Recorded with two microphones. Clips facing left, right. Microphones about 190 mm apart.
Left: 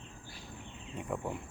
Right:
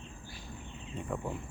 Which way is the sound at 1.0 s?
10° left (ahead or behind).